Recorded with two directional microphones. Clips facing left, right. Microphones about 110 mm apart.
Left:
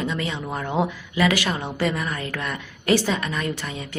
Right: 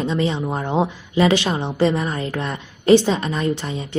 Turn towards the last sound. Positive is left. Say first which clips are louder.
# right 6 dB
turn(degrees=-25)  # may be behind; listen again after turning